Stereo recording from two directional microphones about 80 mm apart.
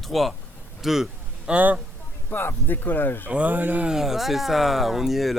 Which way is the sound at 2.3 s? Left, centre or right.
Left.